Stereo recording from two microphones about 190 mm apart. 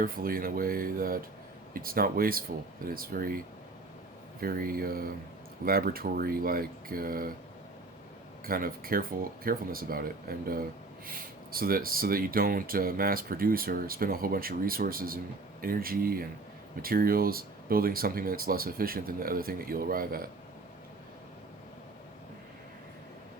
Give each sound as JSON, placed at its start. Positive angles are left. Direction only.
{"t": 0.0, "sound": "speech", "side_deg": -50}
{"t": 4.4, "sound": "speech", "side_deg": -50}
{"t": 8.4, "sound": "speech", "side_deg": -50}